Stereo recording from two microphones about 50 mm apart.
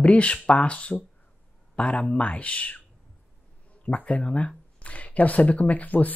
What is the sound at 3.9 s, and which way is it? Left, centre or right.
Speech, left.